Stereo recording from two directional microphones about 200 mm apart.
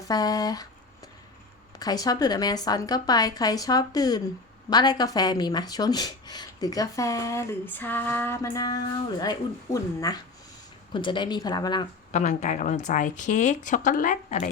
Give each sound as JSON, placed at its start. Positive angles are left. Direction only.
{"t": 0.1, "sound": "a woman's voice", "side_deg": 20}
{"t": 1.8, "sound": "a woman's voice", "side_deg": 20}
{"t": 12.1, "sound": "speech", "side_deg": 35}